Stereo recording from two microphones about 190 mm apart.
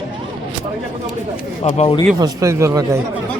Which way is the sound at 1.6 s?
30° left (ahead or behind).